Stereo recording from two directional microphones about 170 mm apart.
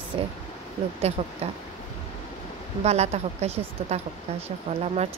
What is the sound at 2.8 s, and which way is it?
A woman's voice, 40° right (ahead or behind).